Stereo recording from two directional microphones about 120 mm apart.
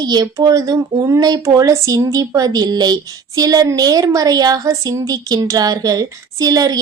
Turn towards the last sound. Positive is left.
turn(degrees=-30)  # may be behind; listen again after turning